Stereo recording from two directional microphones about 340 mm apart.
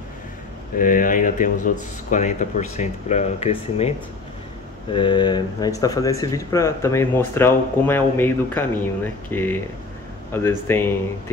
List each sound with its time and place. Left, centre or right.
0.7 s speech: left
4.9 s speech: centre